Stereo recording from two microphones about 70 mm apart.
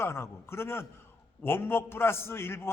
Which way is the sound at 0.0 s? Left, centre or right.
Left.